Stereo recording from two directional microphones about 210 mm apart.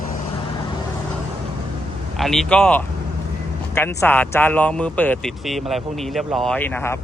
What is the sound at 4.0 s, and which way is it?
Speech, 10° left (ahead or behind).